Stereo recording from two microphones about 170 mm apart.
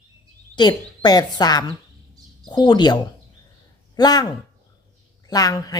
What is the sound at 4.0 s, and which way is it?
Speech, 25° left (ahead or behind).